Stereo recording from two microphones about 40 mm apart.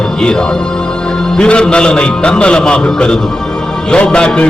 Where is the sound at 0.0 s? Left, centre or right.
Centre.